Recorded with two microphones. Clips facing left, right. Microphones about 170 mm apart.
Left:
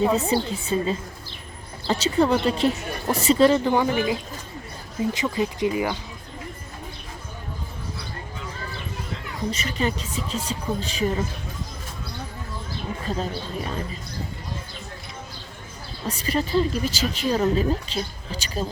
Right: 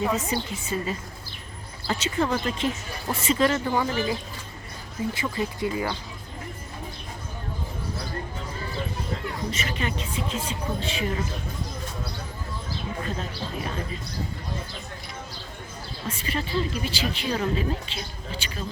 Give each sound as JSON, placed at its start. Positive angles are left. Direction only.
{"t": 0.0, "sound": "a woman's voice", "side_deg": 30}
{"t": 3.7, "sound": "speech", "side_deg": 20}
{"t": 9.5, "sound": "a woman's voice", "side_deg": 40}
{"t": 16.0, "sound": "a woman's voice", "side_deg": 40}